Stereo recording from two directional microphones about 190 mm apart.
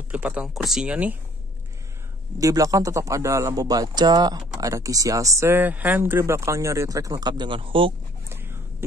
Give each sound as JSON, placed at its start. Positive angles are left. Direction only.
{"t": 0.1, "sound": "a man's voice", "side_deg": -5}
{"t": 2.3, "sound": "a man's voice", "side_deg": -15}
{"t": 8.3, "sound": "a sound", "side_deg": -10}